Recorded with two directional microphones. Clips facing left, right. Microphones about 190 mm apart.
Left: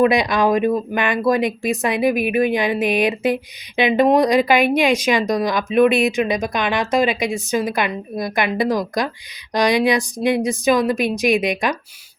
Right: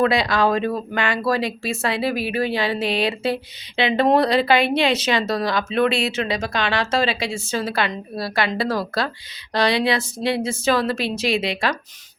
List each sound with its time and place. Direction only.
0.0 s speech: 20° left (ahead or behind)